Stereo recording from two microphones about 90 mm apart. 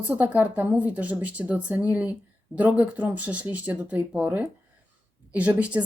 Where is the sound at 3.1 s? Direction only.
15° right (ahead or behind).